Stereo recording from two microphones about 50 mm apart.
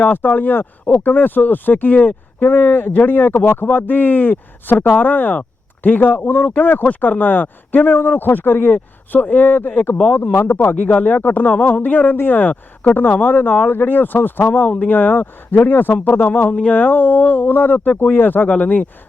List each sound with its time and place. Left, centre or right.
0.0 s speech: left
18.4 s speech: left